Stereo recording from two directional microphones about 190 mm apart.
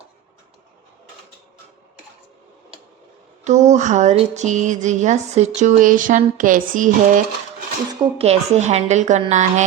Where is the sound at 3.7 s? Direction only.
40° right (ahead or behind).